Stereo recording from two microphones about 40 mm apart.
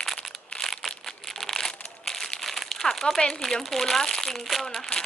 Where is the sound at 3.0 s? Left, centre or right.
Centre.